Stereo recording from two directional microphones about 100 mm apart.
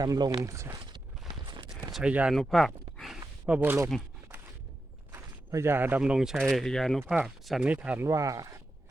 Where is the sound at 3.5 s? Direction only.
20° right (ahead or behind).